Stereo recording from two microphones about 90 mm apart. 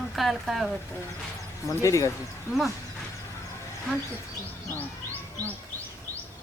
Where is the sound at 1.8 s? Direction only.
35° left (ahead or behind).